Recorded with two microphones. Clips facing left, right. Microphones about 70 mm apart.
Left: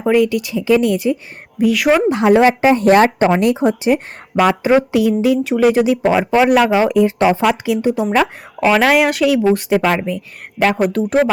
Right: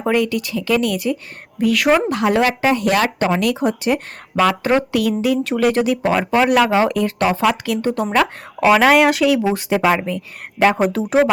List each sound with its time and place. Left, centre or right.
0.1 s speech: centre
1.5 s speech: centre
2.0 s speech: left
3.9 s speech: centre
5.2 s speech: centre
7.9 s speech: centre
10.1 s speech: centre